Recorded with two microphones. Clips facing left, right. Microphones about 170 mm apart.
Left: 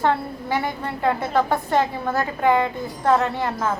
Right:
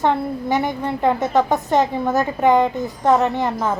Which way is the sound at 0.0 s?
15° right (ahead or behind).